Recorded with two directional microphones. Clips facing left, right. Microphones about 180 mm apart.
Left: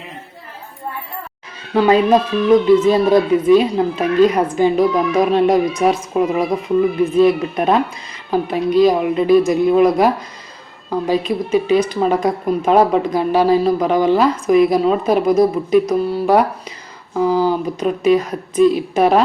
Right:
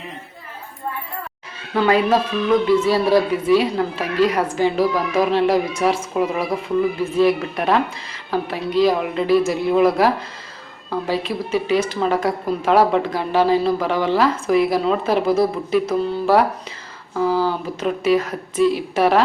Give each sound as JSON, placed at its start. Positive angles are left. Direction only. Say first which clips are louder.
{"t": 1.7, "sound": "speech", "louder": "left 4 dB", "side_deg": 15}